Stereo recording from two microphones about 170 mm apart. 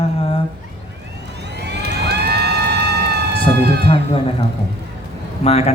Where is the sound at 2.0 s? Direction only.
75° right (ahead or behind).